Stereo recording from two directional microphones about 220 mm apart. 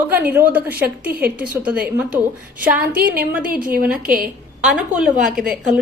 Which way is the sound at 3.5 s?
40° right (ahead or behind).